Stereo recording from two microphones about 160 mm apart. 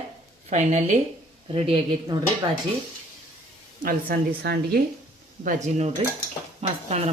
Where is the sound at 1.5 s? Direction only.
35° right (ahead or behind).